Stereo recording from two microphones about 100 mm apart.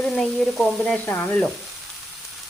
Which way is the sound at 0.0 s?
5° left (ahead or behind).